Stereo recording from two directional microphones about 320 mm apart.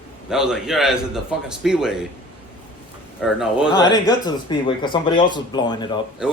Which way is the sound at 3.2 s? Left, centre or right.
Centre.